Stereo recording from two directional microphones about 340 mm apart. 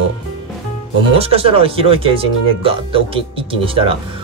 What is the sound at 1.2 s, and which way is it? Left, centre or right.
Speech, centre.